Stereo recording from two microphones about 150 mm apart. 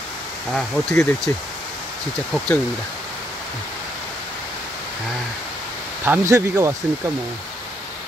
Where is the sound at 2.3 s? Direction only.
10° left (ahead or behind).